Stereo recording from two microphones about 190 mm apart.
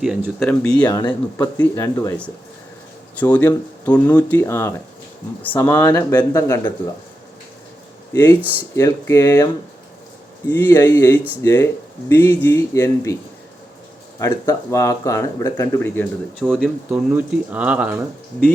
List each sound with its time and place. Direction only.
0.0 s speech: centre (ahead or behind)
0.9 s speech: 20° left (ahead or behind)
8.1 s speech: 10° left (ahead or behind)
10.5 s speech: 10° left (ahead or behind)
14.2 s speech: 15° left (ahead or behind)
16.4 s speech: centre (ahead or behind)